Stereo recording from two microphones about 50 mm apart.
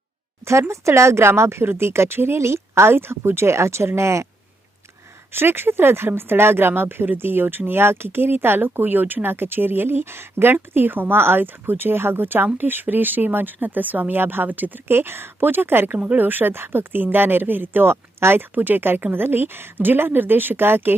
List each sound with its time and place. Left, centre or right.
0.7 s a woman's voice: right
5.3 s speech: right
16.0 s speech: right